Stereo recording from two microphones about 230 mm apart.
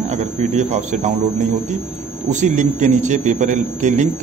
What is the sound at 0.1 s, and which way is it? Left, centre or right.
A man's voice, right.